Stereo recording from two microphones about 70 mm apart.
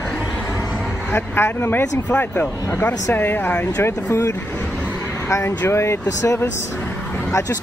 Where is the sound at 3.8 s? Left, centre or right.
Left.